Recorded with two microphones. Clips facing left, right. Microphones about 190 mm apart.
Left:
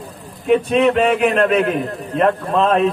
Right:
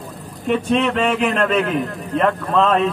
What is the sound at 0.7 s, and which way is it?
A man's voice, 35° left (ahead or behind).